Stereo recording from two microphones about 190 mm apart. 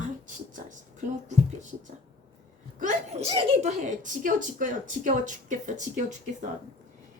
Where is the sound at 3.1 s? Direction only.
35° right (ahead or behind).